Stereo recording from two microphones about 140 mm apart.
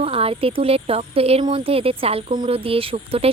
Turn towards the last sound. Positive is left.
turn(degrees=-45)  # may be behind; listen again after turning